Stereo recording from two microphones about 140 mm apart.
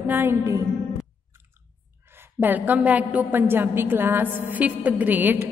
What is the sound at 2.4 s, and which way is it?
A woman's voice, 10° right (ahead or behind).